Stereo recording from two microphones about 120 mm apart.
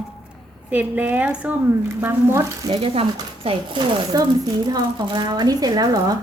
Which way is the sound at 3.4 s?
40° right (ahead or behind).